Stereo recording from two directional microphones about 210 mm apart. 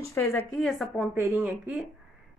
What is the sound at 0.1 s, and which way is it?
Speech, 10° left (ahead or behind).